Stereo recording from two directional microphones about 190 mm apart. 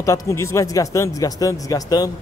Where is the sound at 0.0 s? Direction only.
15° left (ahead or behind).